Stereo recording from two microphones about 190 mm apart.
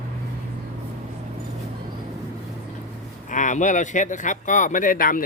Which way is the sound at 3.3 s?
40° left (ahead or behind).